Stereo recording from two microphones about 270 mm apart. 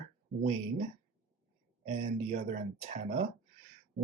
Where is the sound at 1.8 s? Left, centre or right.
Right.